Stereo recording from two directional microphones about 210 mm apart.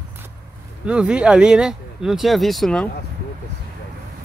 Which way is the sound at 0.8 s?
5° right (ahead or behind).